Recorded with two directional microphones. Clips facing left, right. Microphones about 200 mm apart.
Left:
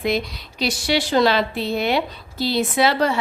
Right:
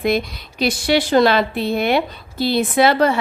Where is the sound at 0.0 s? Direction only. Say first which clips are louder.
Right 3 dB; 50° right (ahead or behind).